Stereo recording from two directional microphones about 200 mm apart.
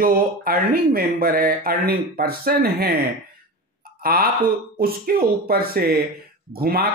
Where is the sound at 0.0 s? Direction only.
50° right (ahead or behind).